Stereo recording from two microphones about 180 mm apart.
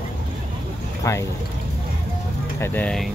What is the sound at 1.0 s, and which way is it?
Speech, 15° left (ahead or behind).